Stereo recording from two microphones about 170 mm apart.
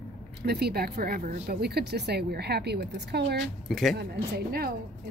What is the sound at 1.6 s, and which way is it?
Speech, 70° right (ahead or behind).